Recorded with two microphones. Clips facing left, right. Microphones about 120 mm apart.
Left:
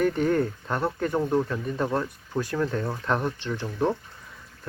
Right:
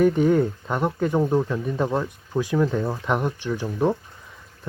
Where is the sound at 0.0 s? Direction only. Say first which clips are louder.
Right 5 dB; 10° right (ahead or behind).